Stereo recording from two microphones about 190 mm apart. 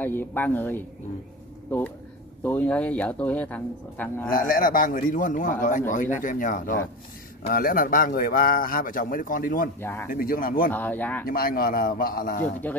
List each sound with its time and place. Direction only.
0.0 s speech: 10° left (ahead or behind)
2.4 s speech: 10° left (ahead or behind)
4.3 s a man's voice: 50° left (ahead or behind)
9.8 s speech: 10° left (ahead or behind)
10.1 s a man's voice: 50° left (ahead or behind)
10.7 s speech: 10° left (ahead or behind)
11.2 s a man's voice: 50° left (ahead or behind)